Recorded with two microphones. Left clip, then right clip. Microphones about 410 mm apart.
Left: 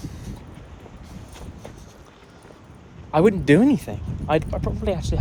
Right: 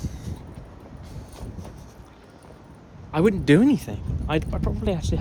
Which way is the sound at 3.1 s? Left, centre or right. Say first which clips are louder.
Left 3 dB; centre.